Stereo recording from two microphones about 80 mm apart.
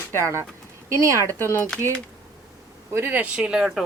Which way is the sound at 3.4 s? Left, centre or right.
Centre.